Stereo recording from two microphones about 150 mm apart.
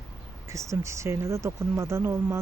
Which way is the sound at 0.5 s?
20° right (ahead or behind).